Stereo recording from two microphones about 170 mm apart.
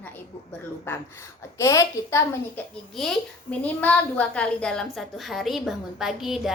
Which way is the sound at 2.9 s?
5° left (ahead or behind).